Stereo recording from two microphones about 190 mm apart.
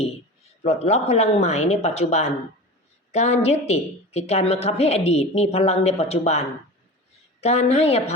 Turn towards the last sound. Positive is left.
turn(degrees=30)  # may be behind; listen again after turning